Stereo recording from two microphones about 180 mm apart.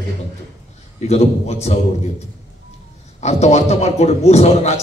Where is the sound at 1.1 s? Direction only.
35° left (ahead or behind).